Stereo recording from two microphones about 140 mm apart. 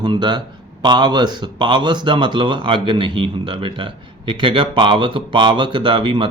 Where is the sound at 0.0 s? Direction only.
30° right (ahead or behind).